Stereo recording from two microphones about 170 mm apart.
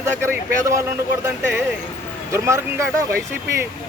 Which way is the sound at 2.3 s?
15° right (ahead or behind).